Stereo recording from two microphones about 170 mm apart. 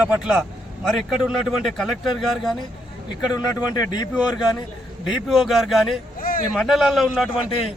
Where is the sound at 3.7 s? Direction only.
25° left (ahead or behind).